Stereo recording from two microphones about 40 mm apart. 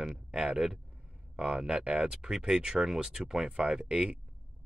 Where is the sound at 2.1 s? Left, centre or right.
Centre.